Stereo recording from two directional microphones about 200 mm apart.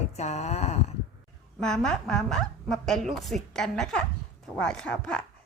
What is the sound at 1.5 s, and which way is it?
Speech, 5° left (ahead or behind).